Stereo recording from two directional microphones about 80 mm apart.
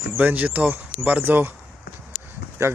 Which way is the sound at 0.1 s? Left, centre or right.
Centre.